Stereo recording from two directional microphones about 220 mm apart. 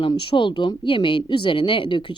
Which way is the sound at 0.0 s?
20° left (ahead or behind).